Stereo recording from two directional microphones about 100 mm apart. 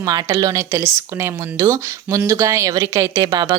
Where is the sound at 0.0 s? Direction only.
35° right (ahead or behind).